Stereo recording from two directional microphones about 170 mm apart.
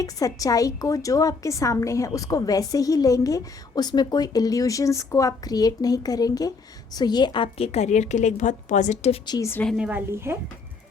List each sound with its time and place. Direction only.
0.0 s a woman's voice: 20° left (ahead or behind); by 9.1 s 40° left (ahead or behind)
9.2 s a woman's voice: 20° left (ahead or behind)
9.6 s a woman's voice: 5° right (ahead or behind)